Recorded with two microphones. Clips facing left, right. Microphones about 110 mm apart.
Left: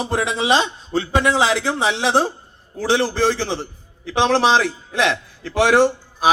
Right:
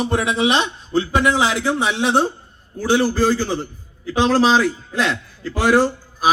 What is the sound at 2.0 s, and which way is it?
Speech, 90° left.